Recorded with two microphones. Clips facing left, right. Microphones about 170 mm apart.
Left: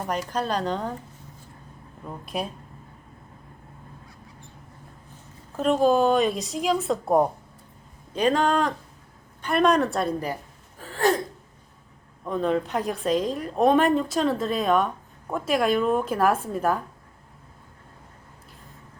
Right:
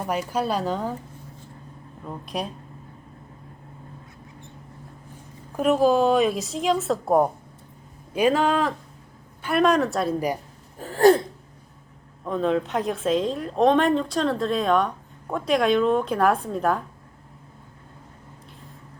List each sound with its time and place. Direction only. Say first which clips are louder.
0.1 s speech: right 2 dB; 10° right (ahead or behind)
2.0 s a woman's voice: even; centre (ahead or behind)
5.5 s a woman's voice: right 1 dB; 5° right (ahead or behind)
10.8 s gasp: right 7 dB; 40° right (ahead or behind)
12.2 s a woman's voice: right 1 dB; centre (ahead or behind)